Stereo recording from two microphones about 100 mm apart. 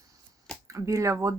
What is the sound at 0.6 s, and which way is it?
Speech, 30° right (ahead or behind).